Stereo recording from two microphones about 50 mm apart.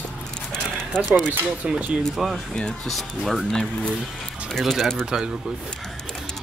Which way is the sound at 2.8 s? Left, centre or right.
Centre.